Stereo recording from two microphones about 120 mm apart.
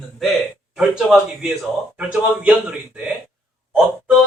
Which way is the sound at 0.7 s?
5° right (ahead or behind).